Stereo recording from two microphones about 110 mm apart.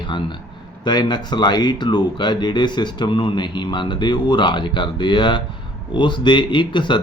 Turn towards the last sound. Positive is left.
turn(degrees=45)  # may be behind; listen again after turning